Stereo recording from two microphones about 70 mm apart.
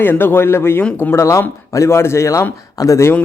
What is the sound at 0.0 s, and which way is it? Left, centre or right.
Speech, left.